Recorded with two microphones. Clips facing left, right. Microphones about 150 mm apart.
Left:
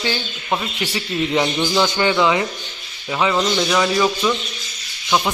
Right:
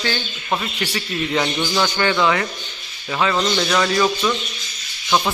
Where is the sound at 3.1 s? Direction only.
5° left (ahead or behind).